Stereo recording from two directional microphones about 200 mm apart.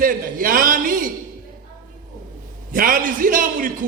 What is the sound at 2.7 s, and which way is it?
A man's voice, 45° right (ahead or behind).